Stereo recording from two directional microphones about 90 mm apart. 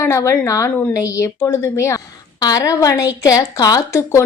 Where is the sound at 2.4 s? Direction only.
40° left (ahead or behind).